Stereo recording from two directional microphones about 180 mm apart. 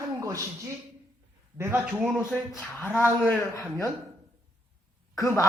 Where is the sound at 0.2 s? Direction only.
15° right (ahead or behind).